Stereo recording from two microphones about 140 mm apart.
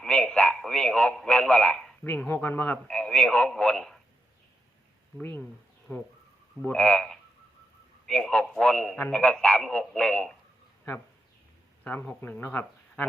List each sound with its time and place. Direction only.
0.0 s a sound: 5° left (ahead or behind)
2.0 s speech: 15° left (ahead or behind)
5.2 s speech: 15° left (ahead or behind)
6.6 s speech: 5° left (ahead or behind)
11.8 s speech: 10° left (ahead or behind)